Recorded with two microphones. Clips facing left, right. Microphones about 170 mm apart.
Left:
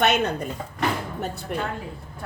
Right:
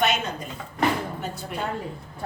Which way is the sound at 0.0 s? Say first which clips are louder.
Left 3 dB; 65° left (ahead or behind).